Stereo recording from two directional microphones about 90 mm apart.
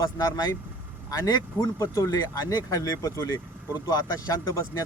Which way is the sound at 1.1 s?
40° left (ahead or behind).